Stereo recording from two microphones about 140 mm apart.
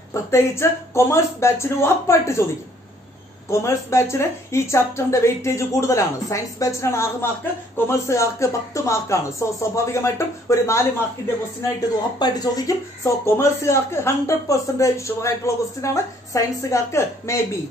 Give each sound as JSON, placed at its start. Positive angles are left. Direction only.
{"t": 0.1, "sound": "speech", "side_deg": 20}
{"t": 3.4, "sound": "speech", "side_deg": 20}
{"t": 12.2, "sound": "speech", "side_deg": 25}